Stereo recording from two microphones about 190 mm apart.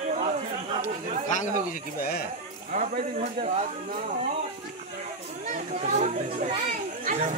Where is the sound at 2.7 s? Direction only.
45° right (ahead or behind).